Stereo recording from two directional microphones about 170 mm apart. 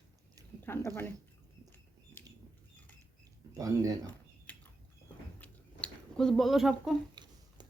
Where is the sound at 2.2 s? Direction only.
10° left (ahead or behind).